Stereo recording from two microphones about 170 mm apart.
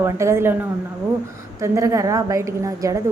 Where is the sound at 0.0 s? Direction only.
15° right (ahead or behind).